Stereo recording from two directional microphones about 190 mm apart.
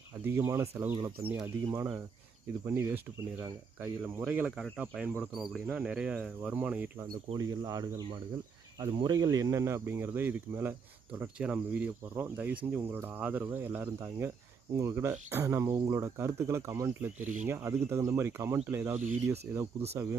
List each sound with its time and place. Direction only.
0.2 s speech: 15° right (ahead or behind)
7.3 s speech: 20° right (ahead or behind)